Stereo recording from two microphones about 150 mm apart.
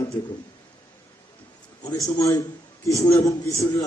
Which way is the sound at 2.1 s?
20° left (ahead or behind).